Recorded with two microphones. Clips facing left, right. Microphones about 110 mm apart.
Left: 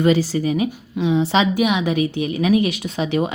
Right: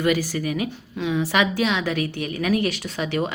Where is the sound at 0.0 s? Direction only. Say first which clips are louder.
Left 5 dB; 25° left (ahead or behind).